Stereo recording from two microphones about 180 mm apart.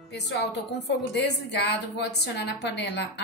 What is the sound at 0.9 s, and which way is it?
A woman's voice, 70° left (ahead or behind).